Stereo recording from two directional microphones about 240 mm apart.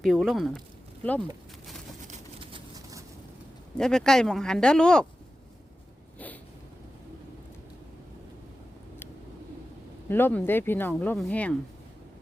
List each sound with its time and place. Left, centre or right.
0.0 s speech: centre
2.0 s vehicle: right
3.8 s speech: centre
10.1 s speech: centre